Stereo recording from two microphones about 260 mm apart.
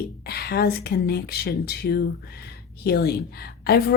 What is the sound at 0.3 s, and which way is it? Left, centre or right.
Speech, left.